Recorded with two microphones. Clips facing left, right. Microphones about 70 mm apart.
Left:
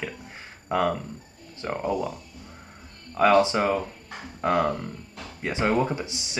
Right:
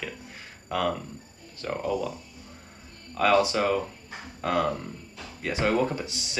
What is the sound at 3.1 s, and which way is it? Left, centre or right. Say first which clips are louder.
Speech: left 3 dB; left.